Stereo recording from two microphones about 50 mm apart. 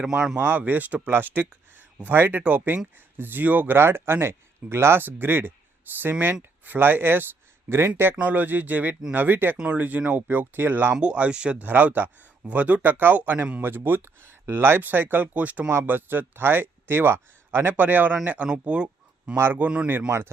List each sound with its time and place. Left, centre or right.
0.3 s speech: right
3.8 s speech: right
5.0 s speech: right
7.7 s speech: right
8.2 s speech: right
11.0 s speech: right
11.6 s speech: right
13.6 s speech: right
14.8 s speech: right
15.7 s speech: right
17.7 s speech: right
18.5 s speech: right
20.1 s speech: right